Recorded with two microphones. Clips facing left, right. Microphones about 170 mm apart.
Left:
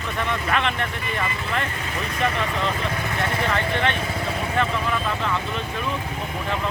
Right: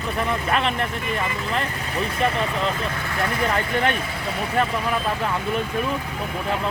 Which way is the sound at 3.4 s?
40° right (ahead or behind).